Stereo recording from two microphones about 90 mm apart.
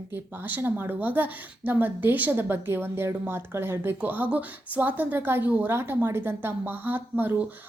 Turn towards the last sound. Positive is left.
turn(degrees=-20)  # may be behind; listen again after turning